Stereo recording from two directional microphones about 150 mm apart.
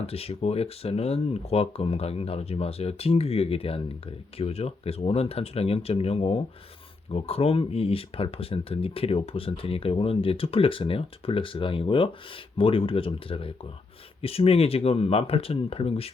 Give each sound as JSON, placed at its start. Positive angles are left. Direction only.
{"t": 0.0, "sound": "speech", "side_deg": 40}